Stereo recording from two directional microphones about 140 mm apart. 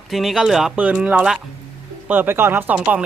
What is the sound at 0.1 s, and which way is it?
Speech, centre (ahead or behind).